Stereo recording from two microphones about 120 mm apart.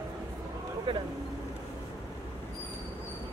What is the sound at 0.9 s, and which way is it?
Speech, 50° right (ahead or behind).